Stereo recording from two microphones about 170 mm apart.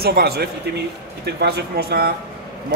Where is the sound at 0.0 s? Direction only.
65° right (ahead or behind).